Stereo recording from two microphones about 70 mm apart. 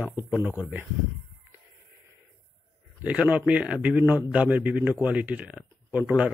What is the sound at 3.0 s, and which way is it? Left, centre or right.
Speech, right.